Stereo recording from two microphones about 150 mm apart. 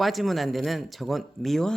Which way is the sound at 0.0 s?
Centre (ahead or behind).